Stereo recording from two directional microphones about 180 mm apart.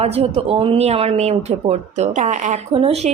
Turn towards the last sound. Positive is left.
turn(degrees=-35)  # may be behind; listen again after turning